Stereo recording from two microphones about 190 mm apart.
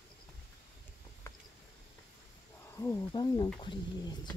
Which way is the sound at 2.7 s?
15° left (ahead or behind).